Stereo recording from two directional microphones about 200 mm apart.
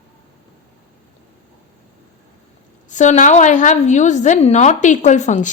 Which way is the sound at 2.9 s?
35° left (ahead or behind).